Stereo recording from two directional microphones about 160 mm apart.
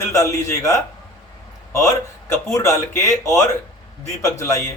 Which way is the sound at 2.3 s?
20° left (ahead or behind).